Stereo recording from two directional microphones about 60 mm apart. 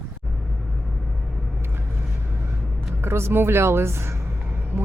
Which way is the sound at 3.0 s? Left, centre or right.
Right.